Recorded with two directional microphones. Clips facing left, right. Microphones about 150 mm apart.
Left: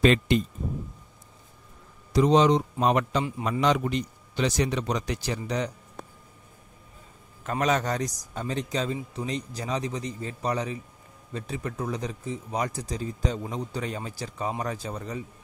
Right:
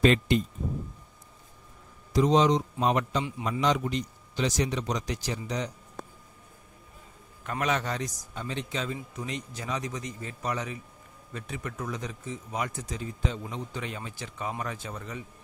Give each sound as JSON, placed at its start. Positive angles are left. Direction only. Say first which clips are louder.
{"t": 0.0, "sound": "speech", "louder": "left 2 dB", "side_deg": 90}
{"t": 2.1, "sound": "speech", "louder": "left 2 dB", "side_deg": 65}
{"t": 7.6, "sound": "speech", "louder": "left 4 dB", "side_deg": 40}